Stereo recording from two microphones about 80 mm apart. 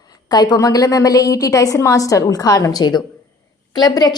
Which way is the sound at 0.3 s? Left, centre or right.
Left.